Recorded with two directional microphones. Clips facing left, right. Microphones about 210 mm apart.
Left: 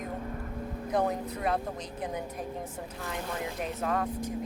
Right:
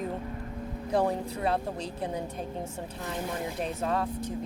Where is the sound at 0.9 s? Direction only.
30° right (ahead or behind).